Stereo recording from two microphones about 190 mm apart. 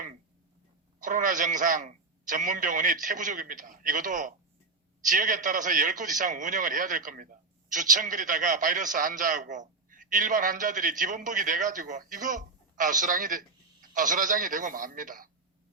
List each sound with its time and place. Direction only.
0.9 s a man's voice: 45° right (ahead or behind)